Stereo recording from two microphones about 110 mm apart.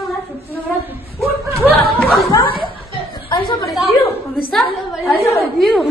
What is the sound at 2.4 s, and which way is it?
Chuckle, 45° left (ahead or behind).